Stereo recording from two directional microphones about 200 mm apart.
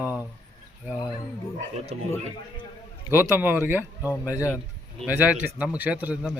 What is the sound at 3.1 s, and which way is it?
A man's voice, 10° right (ahead or behind).